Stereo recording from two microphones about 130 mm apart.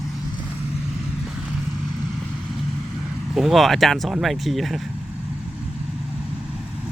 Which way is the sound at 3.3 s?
Centre (ahead or behind).